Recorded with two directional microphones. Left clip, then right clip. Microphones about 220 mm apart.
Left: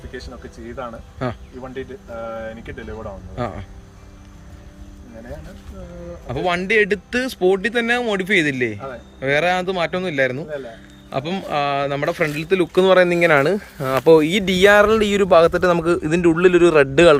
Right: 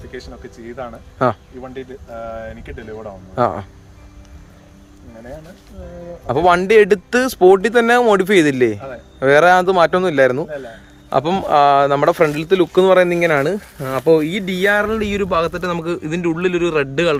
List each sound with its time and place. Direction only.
0.8 s a man's voice: 5° right (ahead or behind)
1.2 s speech: 20° right (ahead or behind)
1.6 s a man's voice: 5° right (ahead or behind)
3.3 s speech: 20° right (ahead or behind)
6.2 s a man's voice: 20° right (ahead or behind); by 17.2 s 15° left (ahead or behind)